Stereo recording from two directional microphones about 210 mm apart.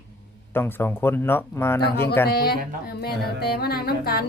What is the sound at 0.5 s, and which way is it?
Speech, 10° left (ahead or behind).